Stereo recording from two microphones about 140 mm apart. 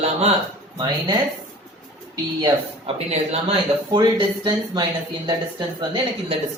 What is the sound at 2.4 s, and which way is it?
Speech, 45° right (ahead or behind).